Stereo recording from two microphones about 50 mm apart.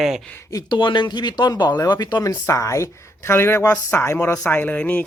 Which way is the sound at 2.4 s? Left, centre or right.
Left.